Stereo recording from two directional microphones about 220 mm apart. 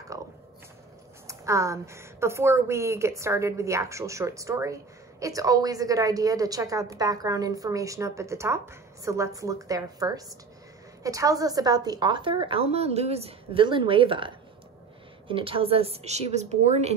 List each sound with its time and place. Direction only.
1.2 s a woman's voice: 15° right (ahead or behind); by 16.9 s 30° right (ahead or behind)